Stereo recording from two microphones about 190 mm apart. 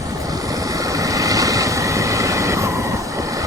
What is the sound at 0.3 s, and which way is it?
Vehicle, 20° right (ahead or behind).